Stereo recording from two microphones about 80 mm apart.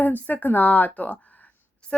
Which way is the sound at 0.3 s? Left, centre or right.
Left.